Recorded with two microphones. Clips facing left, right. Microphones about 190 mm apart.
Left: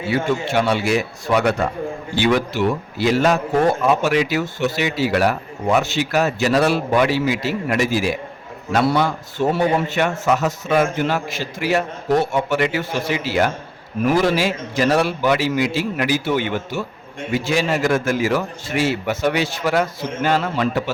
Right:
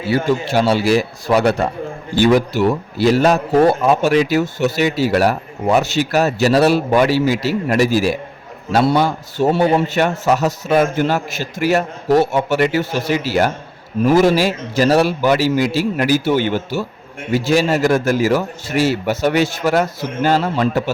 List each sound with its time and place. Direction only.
0.1 s a man's voice: 35° right (ahead or behind)
8.7 s a man's voice: 25° right (ahead or behind)